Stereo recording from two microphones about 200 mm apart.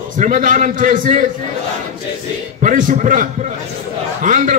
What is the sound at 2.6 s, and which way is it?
A man's voice, 40° right (ahead or behind).